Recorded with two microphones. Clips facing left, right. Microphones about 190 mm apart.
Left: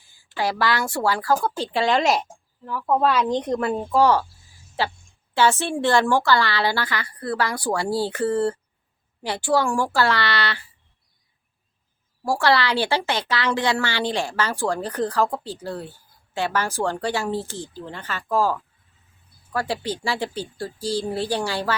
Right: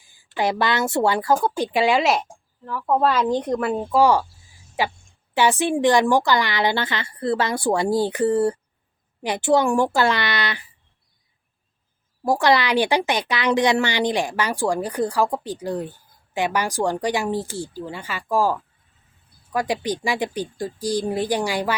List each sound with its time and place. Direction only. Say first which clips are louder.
0.1 s a woman's voice: right 3 dB; 20° right (ahead or behind); by 2.9 s 5° left (ahead or behind)
2.9 s a woman's voice: right 1 dB; 10° right (ahead or behind)
12.2 s speech: right 2 dB; 20° right (ahead or behind)